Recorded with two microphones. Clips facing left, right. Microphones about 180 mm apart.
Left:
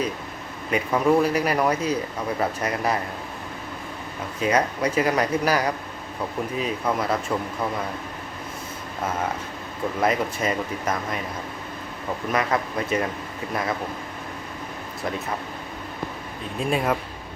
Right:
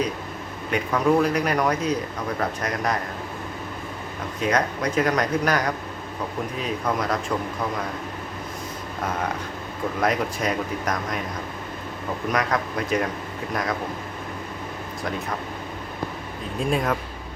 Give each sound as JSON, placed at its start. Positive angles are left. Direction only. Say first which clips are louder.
{"t": 0.7, "sound": "a man's voice", "louder": "left 1 dB", "side_deg": 5}
{"t": 4.4, "sound": "a man's voice", "louder": "left 1 dB", "side_deg": 5}
{"t": 10.0, "sound": "speech", "louder": "left 1 dB", "side_deg": 0}
{"t": 12.3, "sound": "speech", "louder": "left 1 dB", "side_deg": 5}
{"t": 16.6, "sound": "speech", "louder": "even", "side_deg": 5}